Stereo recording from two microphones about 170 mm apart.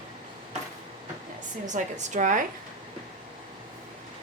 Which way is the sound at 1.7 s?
45° right (ahead or behind).